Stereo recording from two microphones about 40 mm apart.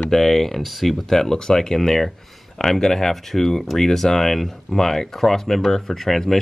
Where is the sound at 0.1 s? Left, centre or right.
Centre.